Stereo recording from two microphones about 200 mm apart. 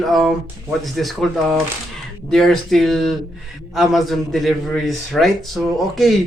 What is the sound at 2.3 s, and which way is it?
A man's voice, centre (ahead or behind).